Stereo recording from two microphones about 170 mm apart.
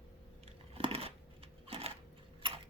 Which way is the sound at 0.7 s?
35° right (ahead or behind).